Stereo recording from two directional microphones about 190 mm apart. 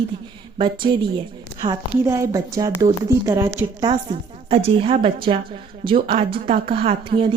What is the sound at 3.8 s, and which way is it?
A woman's voice, 30° right (ahead or behind).